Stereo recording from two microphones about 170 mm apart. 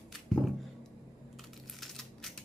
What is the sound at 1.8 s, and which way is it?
Crushing, 5° left (ahead or behind).